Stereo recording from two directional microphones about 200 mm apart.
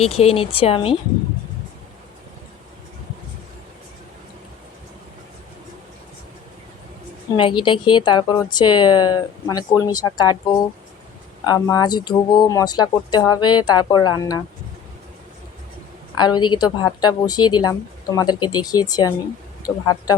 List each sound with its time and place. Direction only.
0.0 s a woman's voice: 30° left (ahead or behind)
7.3 s a woman's voice: 25° left (ahead or behind)
16.1 s a woman's voice: 20° left (ahead or behind)